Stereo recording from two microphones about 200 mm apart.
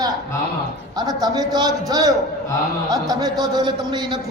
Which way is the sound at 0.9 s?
20° right (ahead or behind).